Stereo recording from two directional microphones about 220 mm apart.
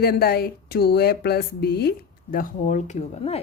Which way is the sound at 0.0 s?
45° left (ahead or behind).